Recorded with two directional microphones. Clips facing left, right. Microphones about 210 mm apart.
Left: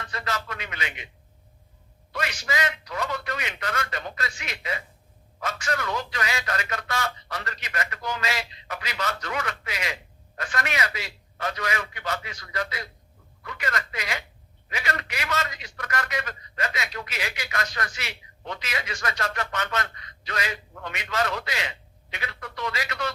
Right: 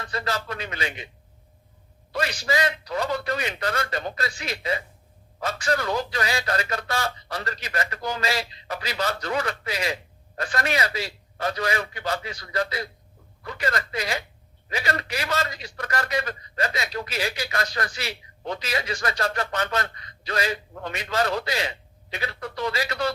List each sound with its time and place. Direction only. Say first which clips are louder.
0.0 s a man's voice: right 3 dB; 35° right (ahead or behind)
2.1 s a man's voice: right 4 dB; 35° right (ahead or behind)